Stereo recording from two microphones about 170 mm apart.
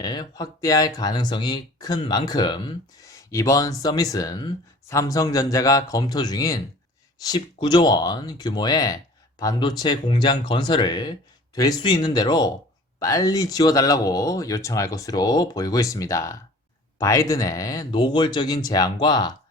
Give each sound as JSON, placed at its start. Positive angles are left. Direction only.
{"t": 0.0, "sound": "speech", "side_deg": 25}